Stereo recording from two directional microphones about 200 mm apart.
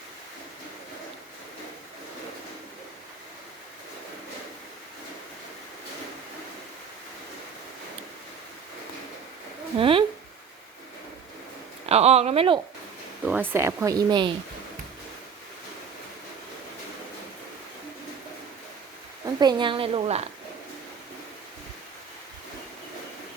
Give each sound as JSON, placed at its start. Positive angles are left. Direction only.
{"t": 9.7, "sound": "a woman's voice", "side_deg": -25}
{"t": 11.9, "sound": "speech", "side_deg": -30}
{"t": 13.2, "sound": "speech", "side_deg": -10}
{"t": 19.2, "sound": "a woman's voice", "side_deg": -20}